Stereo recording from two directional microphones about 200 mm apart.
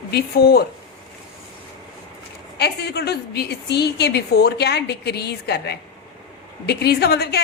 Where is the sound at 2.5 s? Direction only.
55° left (ahead or behind).